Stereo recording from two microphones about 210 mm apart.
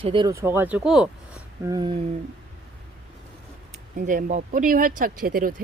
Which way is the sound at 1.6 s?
20° right (ahead or behind).